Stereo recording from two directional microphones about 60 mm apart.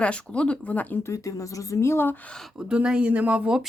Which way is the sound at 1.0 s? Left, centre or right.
Left.